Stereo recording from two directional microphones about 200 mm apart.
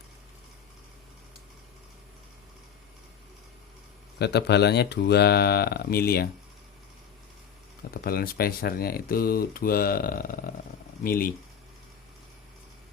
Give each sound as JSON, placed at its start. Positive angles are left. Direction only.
{"t": 4.2, "sound": "speech", "side_deg": 55}
{"t": 7.9, "sound": "speech", "side_deg": 50}